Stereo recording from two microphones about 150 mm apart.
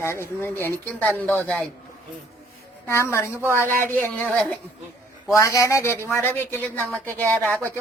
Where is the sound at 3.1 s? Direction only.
15° left (ahead or behind).